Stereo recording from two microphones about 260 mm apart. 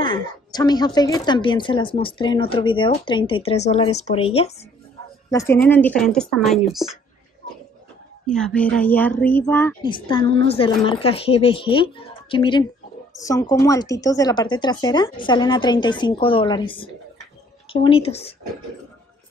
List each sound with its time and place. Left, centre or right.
0.0 s a woman's voice: centre
5.3 s speech: centre
8.3 s speech: centre
9.8 s a woman's voice: centre